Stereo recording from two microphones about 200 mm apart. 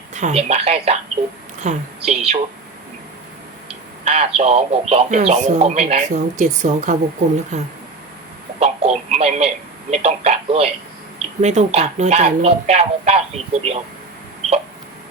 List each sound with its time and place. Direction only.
0.1 s a woman's voice: 35° right (ahead or behind)
4.0 s speech: 30° right (ahead or behind)